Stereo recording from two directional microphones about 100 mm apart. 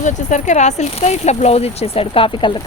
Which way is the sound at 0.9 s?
90° left.